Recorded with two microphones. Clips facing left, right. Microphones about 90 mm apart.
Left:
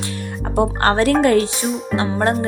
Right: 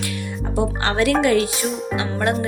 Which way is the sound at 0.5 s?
45° left (ahead or behind).